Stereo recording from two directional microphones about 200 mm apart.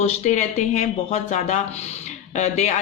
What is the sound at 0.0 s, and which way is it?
Speech, 35° left (ahead or behind).